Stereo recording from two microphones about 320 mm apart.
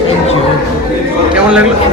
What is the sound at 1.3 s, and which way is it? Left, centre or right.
Speech, centre.